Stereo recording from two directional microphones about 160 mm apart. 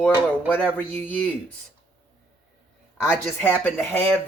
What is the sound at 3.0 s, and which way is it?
Speech, 5° left (ahead or behind).